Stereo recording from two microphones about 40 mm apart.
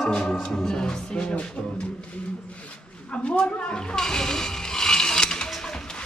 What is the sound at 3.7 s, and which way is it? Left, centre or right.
Mechanisms, left.